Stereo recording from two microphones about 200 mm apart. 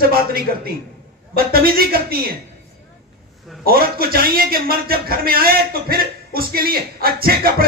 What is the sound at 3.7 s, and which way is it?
Speech, 50° right (ahead or behind).